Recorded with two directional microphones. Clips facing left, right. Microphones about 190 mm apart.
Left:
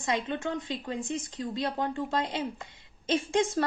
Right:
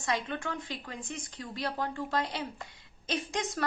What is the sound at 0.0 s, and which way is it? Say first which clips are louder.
A woman's voice: left 3 dB; 20° left (ahead or behind).